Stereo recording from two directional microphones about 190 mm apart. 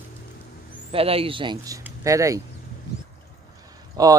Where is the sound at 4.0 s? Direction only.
20° right (ahead or behind).